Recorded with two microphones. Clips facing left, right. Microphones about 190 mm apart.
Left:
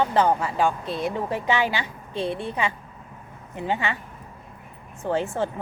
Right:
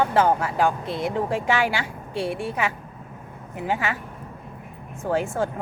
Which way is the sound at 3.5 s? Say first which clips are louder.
Even; 10° right (ahead or behind).